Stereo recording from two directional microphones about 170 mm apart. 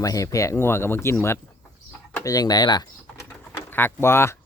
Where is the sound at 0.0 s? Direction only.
20° left (ahead or behind).